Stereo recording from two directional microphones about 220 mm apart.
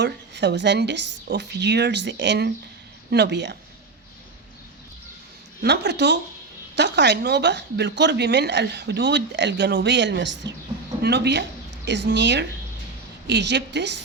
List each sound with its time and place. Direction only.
0.0 s a woman's voice: 50° right (ahead or behind)
5.6 s a woman's voice: 50° right (ahead or behind)